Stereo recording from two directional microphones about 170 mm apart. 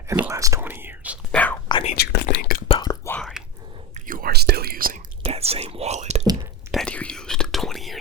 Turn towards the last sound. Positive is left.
turn(degrees=0)  # may be behind; listen again after turning